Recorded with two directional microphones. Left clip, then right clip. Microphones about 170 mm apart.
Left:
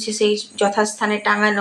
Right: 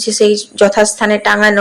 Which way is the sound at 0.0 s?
35° right (ahead or behind).